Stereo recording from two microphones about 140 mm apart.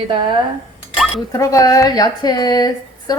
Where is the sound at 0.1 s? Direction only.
35° right (ahead or behind).